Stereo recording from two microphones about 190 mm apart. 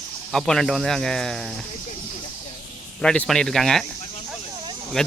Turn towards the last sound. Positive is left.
turn(degrees=5)  # may be behind; listen again after turning